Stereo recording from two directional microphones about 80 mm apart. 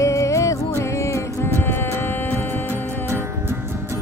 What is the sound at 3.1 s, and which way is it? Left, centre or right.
Music, right.